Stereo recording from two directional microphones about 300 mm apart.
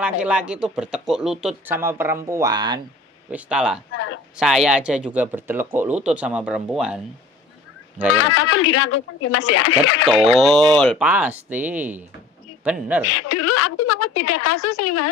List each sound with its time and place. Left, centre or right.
0.0 s speech: centre
3.9 s a sound: left
4.4 s speech: centre
8.2 s a woman's voice: left
10.0 s speech: centre
13.1 s a woman's voice: left